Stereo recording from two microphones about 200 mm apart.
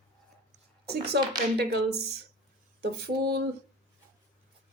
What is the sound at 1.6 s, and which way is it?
A woman's voice, 55° right (ahead or behind).